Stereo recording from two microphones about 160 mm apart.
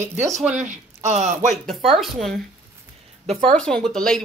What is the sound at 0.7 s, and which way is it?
Speech, 50° right (ahead or behind).